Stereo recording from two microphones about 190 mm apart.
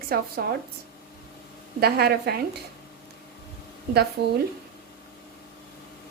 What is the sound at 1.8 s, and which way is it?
Speech, 55° right (ahead or behind).